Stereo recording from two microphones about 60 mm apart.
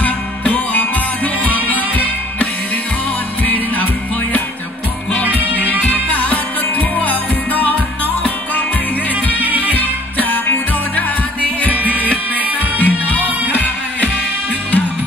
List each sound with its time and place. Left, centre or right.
0.0 s music: left
3.4 s music: left
5.6 s music: left
9.4 s music: right
10.1 s music: left
11.8 s music: left